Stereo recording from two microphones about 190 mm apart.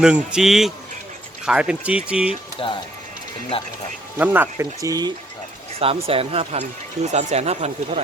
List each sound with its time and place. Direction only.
0.0 s speech: 5° right (ahead or behind)
2.6 s speech: 25° left (ahead or behind)
4.2 s speech: 10° right (ahead or behind)
5.8 s speech: 30° right (ahead or behind)